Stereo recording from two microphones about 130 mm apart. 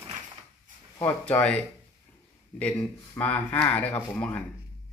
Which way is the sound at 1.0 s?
10° left (ahead or behind).